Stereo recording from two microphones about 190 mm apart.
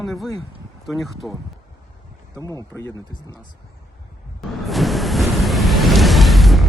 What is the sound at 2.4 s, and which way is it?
Speech, 15° left (ahead or behind).